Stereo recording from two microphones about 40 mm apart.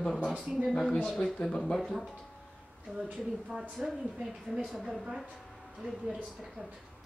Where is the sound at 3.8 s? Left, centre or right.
Centre.